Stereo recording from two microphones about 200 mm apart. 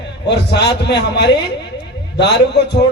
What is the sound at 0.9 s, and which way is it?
A man's voice, 55° left (ahead or behind).